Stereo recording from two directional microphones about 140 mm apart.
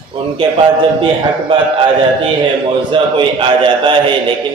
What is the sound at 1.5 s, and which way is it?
Speech, 35° right (ahead or behind).